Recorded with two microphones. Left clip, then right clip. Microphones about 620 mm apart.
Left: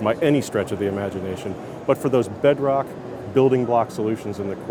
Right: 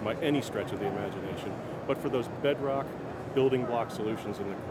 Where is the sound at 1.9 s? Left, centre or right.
Left.